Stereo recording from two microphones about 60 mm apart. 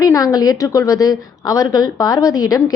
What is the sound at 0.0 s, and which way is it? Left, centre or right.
A woman's voice, left.